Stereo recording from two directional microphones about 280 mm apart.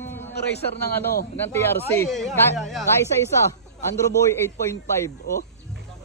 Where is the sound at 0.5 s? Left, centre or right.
Left.